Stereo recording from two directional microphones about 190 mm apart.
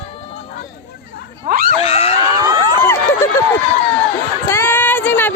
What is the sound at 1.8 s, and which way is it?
Screaming, 30° left (ahead or behind).